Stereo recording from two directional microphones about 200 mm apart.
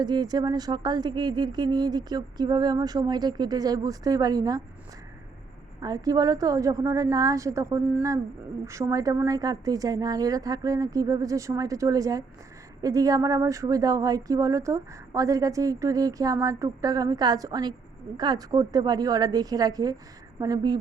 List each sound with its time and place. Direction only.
0.0 s speech: 20° right (ahead or behind)
5.8 s speech: 20° right (ahead or behind)